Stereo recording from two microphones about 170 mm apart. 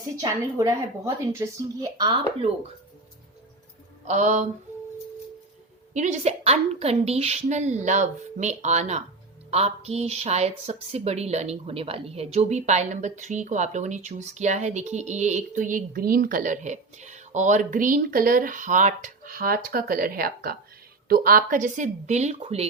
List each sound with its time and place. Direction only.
0.2 s speech: 20° right (ahead or behind)
4.0 s speech: 45° right (ahead or behind)
5.9 s a woman's voice: 45° right (ahead or behind)